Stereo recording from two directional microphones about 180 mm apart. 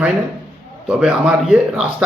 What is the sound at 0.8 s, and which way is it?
Speech, 5° right (ahead or behind).